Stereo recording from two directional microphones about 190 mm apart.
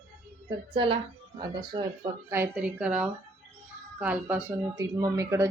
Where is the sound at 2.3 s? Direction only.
10° right (ahead or behind).